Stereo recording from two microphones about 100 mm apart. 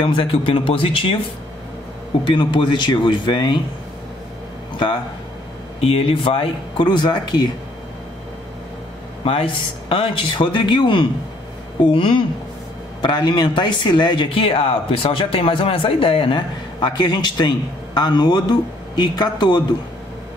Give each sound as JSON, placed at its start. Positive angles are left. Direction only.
{"t": 0.0, "sound": "speech", "side_deg": 55}
{"t": 2.2, "sound": "speech", "side_deg": 50}
{"t": 5.8, "sound": "speech", "side_deg": 80}
{"t": 9.2, "sound": "speech", "side_deg": 65}
{"t": 13.0, "sound": "speech", "side_deg": 50}